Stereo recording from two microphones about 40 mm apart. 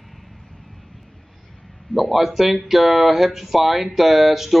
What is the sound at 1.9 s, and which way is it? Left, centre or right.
Speech, centre.